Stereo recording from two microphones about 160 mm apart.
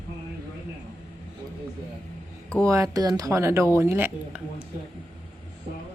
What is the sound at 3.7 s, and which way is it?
Music, 15° right (ahead or behind).